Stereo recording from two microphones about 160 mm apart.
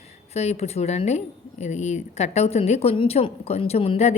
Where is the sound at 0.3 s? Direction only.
40° left (ahead or behind).